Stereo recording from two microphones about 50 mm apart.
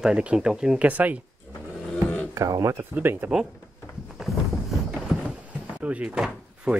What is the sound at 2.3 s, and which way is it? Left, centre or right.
Speech, right.